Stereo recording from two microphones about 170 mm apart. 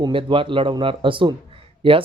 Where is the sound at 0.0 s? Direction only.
30° right (ahead or behind).